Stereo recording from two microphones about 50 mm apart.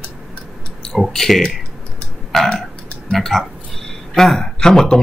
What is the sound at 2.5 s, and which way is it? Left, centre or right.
Burping, centre.